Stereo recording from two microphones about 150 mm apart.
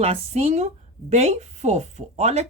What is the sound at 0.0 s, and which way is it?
Speech, 45° right (ahead or behind).